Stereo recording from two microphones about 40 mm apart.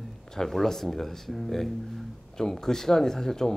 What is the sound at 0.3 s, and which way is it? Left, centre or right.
A man's voice, centre.